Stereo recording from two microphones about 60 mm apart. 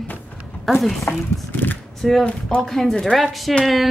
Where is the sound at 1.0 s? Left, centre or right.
Left.